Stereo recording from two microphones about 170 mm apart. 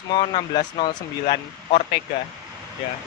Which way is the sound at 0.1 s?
25° left (ahead or behind).